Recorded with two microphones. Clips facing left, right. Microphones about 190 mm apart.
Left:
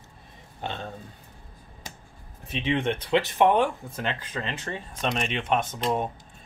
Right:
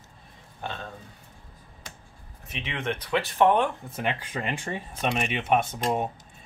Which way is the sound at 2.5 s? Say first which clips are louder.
Left 6 dB; 30° left (ahead or behind).